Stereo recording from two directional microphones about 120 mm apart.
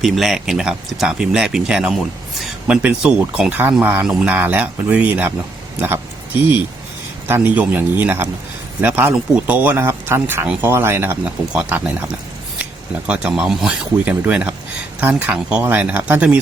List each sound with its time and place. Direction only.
0.0 s speech: centre (ahead or behind)
7.3 s speech: 15° right (ahead or behind)